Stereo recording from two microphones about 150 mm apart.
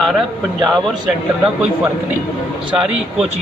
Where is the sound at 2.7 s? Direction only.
5° right (ahead or behind).